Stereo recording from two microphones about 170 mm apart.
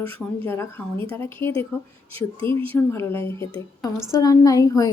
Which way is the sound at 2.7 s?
15° left (ahead or behind).